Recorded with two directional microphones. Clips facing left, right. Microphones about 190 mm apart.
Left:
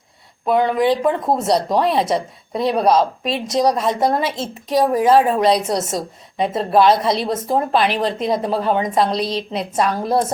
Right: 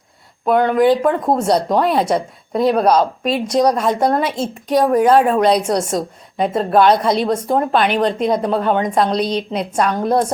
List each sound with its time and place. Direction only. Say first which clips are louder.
0.4 s speech: right 3 dB; centre (ahead or behind)